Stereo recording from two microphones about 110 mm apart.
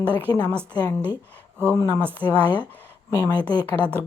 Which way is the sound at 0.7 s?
40° left (ahead or behind).